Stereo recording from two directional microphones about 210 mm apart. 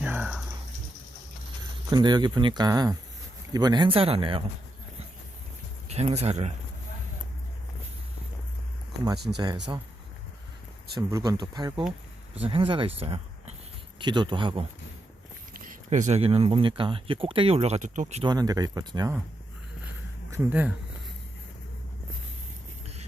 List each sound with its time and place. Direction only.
0.0 s a sound: 5° right (ahead or behind)
1.9 s speech: 20° right (ahead or behind)
5.9 s speech: 30° right (ahead or behind)
9.3 s speech: 10° right (ahead or behind)
11.1 s speech: 15° right (ahead or behind)
15.7 s speech: 35° right (ahead or behind)
18.3 s speech: 15° right (ahead or behind)
20.3 s speech: 5° right (ahead or behind)